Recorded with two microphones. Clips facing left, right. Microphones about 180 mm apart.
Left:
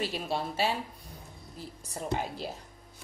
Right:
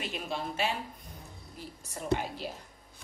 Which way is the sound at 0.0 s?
35° left (ahead or behind).